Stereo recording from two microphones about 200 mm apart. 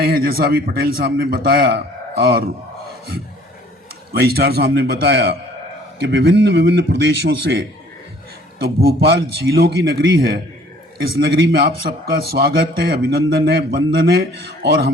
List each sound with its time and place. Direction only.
0.0 s a man's voice: 50° right (ahead or behind)
4.1 s a man's voice: 50° right (ahead or behind)